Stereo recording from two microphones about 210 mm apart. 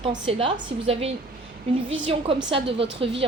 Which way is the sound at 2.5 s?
25° right (ahead or behind).